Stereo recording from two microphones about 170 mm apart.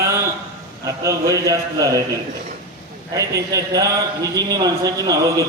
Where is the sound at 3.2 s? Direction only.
20° right (ahead or behind).